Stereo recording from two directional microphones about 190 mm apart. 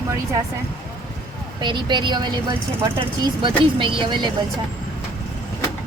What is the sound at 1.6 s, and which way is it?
A woman's voice, 25° right (ahead or behind).